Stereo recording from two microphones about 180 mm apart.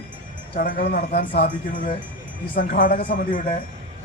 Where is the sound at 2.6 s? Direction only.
50° left (ahead or behind).